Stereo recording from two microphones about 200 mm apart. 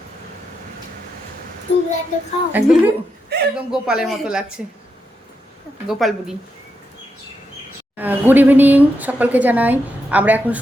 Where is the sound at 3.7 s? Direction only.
5° right (ahead or behind).